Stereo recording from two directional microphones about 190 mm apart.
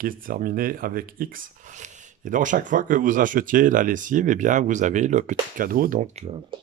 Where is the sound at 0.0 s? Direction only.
50° right (ahead or behind).